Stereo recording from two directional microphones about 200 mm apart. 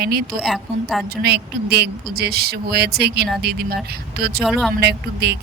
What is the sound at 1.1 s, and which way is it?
Speech, 55° right (ahead or behind).